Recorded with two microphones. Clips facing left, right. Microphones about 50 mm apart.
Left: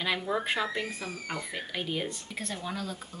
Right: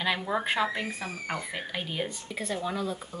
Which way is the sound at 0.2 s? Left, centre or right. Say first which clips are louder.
Right 2 dB; centre.